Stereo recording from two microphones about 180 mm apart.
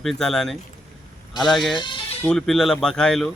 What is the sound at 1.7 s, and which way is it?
Speech, 25° left (ahead or behind).